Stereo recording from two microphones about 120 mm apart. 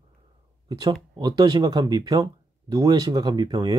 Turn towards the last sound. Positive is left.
turn(degrees=-35)  # may be behind; listen again after turning